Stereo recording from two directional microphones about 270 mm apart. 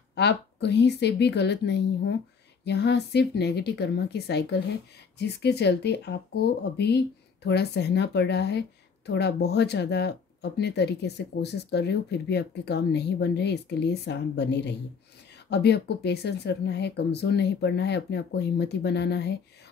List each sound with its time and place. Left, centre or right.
0.1 s speech: left